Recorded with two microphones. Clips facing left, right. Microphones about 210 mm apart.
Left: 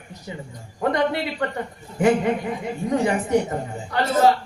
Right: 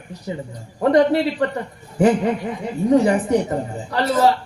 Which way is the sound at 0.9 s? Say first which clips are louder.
Right 7 dB; 35° right (ahead or behind).